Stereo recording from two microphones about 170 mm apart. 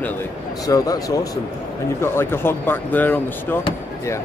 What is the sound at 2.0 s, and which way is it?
Speech, 15° left (ahead or behind).